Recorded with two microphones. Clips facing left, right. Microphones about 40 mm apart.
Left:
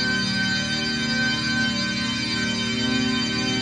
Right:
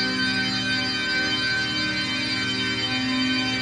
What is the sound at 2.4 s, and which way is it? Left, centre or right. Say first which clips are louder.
Music: left 1 dB; centre.